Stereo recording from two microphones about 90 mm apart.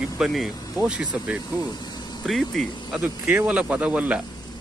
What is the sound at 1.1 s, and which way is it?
Speech, 15° right (ahead or behind).